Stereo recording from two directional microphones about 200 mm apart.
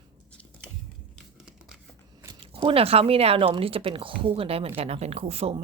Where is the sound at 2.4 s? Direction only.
30° right (ahead or behind).